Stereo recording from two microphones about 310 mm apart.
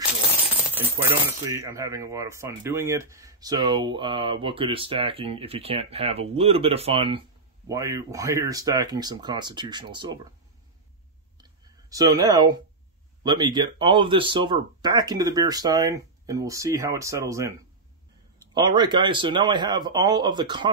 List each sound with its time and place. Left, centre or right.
0.7 s speech: centre
11.3 s clicking: centre
13.2 s speech: centre